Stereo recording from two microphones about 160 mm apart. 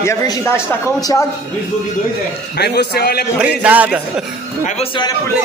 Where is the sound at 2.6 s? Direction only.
90° left.